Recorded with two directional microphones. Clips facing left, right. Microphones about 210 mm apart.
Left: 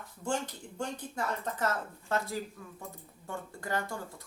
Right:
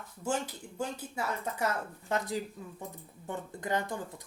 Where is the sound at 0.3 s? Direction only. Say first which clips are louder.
Right 1 dB; 5° right (ahead or behind).